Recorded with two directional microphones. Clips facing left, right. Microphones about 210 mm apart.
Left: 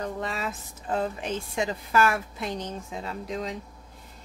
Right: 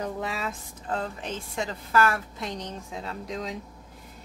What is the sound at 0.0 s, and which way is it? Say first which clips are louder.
A woman's voice: even; 5° right (ahead or behind).